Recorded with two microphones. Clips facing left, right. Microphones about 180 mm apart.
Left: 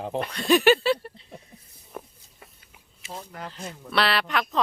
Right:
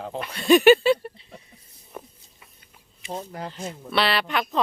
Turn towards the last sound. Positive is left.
turn(degrees=0)  # may be behind; listen again after turning